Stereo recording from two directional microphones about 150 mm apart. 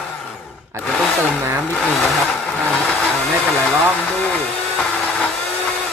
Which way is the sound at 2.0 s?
5° left (ahead or behind).